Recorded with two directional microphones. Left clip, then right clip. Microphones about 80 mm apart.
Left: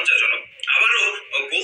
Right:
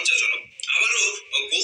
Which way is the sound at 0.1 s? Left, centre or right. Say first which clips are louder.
Left 5 dB; right.